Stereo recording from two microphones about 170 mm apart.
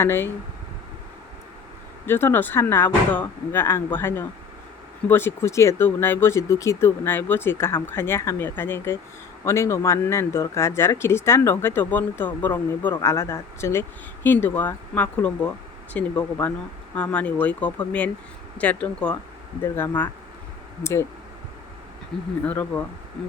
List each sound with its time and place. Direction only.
0.0 s a man's voice: 15° left (ahead or behind)
2.0 s a man's voice: 10° left (ahead or behind)
22.1 s a man's voice: 5° left (ahead or behind)